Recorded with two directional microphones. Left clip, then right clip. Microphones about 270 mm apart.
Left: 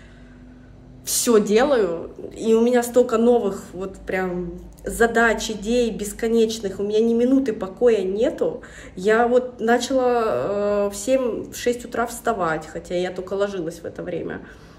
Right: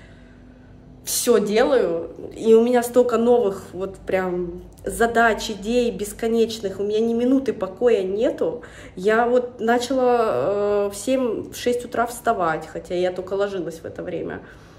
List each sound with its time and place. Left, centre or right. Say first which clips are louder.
1.0 s a woman's voice: even; centre